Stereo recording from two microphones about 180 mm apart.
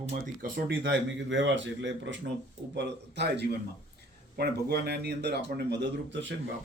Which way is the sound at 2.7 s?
75° right (ahead or behind).